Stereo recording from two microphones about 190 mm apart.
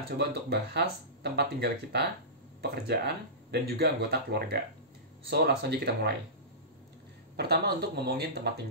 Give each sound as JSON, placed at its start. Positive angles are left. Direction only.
{"t": 0.2, "sound": "speech", "side_deg": -60}
{"t": 7.3, "sound": "speech", "side_deg": -55}